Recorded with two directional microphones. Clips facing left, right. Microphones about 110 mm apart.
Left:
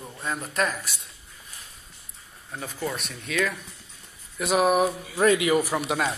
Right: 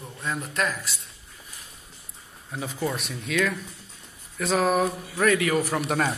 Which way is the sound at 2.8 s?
5° right (ahead or behind).